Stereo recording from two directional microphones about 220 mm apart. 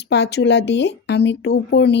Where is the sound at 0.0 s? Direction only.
50° left (ahead or behind).